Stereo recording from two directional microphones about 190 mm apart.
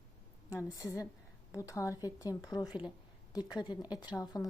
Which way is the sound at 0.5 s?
15° left (ahead or behind).